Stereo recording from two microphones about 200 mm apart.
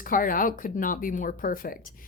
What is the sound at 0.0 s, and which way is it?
Speech, 45° left (ahead or behind).